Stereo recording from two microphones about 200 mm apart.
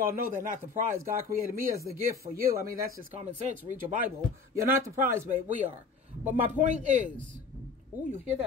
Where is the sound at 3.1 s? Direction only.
35° right (ahead or behind).